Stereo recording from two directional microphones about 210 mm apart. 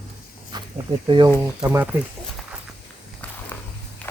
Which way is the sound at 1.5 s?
10° right (ahead or behind).